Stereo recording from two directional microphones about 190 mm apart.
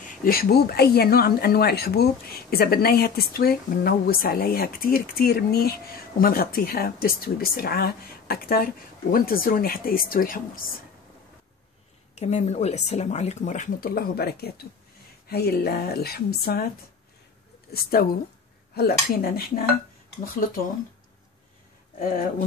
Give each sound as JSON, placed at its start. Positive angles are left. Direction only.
{"t": 0.2, "sound": "speech", "side_deg": 50}
{"t": 12.2, "sound": "a woman's voice", "side_deg": 35}
{"t": 21.9, "sound": "speech", "side_deg": 45}